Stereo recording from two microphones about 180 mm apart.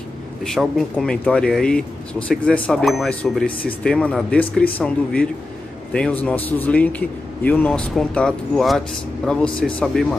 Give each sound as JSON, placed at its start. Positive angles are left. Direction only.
{"t": 0.4, "sound": "a man's voice", "side_deg": 0}